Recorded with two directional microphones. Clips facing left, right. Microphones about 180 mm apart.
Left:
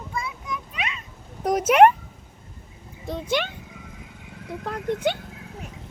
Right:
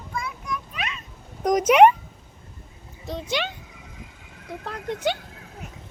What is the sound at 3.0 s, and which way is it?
Speech, 55° left (ahead or behind).